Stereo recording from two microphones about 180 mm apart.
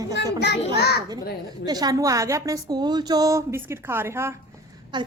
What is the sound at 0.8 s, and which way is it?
Speech, 60° left (ahead or behind).